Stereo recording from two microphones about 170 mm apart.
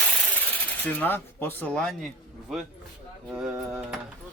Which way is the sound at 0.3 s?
10° left (ahead or behind).